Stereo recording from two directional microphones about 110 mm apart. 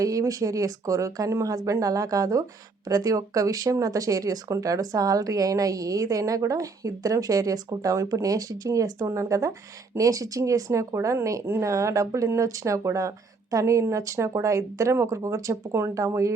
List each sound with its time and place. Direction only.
0.0 s speech: 30° right (ahead or behind)